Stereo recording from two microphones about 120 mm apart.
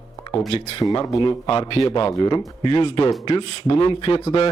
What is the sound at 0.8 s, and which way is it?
Speech, 35° left (ahead or behind).